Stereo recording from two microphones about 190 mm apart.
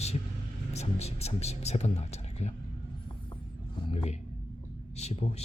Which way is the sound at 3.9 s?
35° left (ahead or behind).